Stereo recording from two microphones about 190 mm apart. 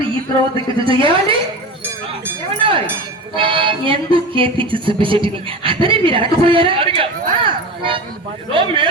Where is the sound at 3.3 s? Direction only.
25° right (ahead or behind).